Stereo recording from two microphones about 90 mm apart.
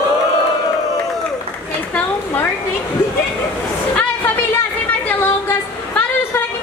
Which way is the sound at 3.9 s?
20° left (ahead or behind).